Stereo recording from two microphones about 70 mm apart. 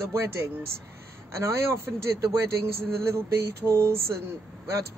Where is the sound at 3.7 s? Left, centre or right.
Right.